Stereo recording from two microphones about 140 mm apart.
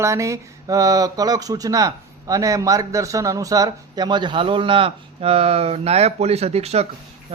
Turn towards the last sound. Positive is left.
turn(degrees=-50)  # may be behind; listen again after turning